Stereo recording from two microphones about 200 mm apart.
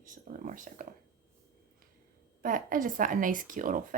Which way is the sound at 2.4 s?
45° right (ahead or behind).